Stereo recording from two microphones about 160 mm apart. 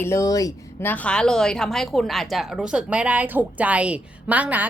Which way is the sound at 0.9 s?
5° left (ahead or behind).